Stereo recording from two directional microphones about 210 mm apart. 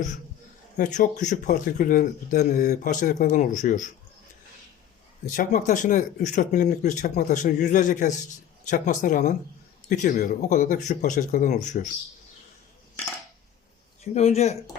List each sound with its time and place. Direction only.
0.8 s speech: 35° left (ahead or behind)
5.2 s speech: 40° left (ahead or behind)
14.0 s speech: 30° left (ahead or behind)